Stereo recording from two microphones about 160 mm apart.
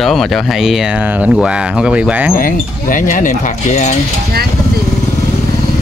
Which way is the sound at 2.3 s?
60° left (ahead or behind).